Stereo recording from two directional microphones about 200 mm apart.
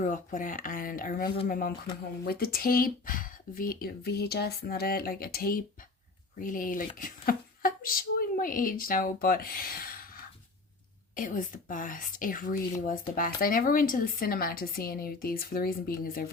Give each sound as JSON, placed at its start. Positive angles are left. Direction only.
{"t": 0.0, "sound": "speech", "side_deg": 40}
{"t": 11.1, "sound": "speech", "side_deg": 40}